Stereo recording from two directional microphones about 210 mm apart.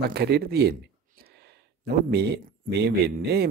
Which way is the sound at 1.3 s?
50° right (ahead or behind).